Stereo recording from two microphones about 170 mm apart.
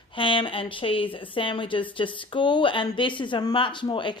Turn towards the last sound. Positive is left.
turn(degrees=25)  # may be behind; listen again after turning